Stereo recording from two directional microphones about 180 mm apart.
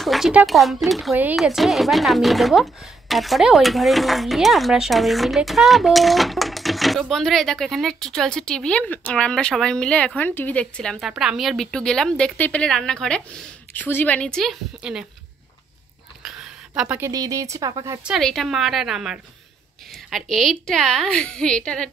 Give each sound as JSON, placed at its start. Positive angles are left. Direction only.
{"t": 0.0, "sound": "speech", "side_deg": 0}
{"t": 16.2, "sound": "a sound", "side_deg": -5}
{"t": 17.1, "sound": "speech", "side_deg": -20}
{"t": 18.0, "sound": "speech", "side_deg": 0}